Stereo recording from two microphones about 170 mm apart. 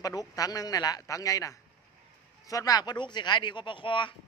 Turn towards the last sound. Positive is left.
turn(degrees=30)  # may be behind; listen again after turning